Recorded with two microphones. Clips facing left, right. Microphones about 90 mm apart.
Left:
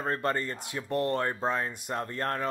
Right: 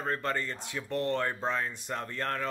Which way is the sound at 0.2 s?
40° left (ahead or behind).